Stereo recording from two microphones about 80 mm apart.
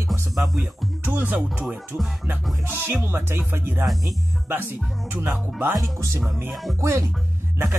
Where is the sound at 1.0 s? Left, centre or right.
Right.